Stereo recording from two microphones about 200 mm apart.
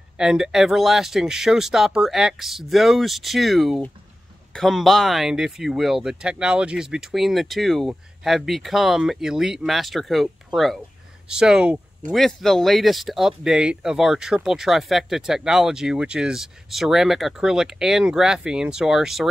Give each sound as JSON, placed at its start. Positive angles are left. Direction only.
{"t": 0.2, "sound": "speech", "side_deg": -5}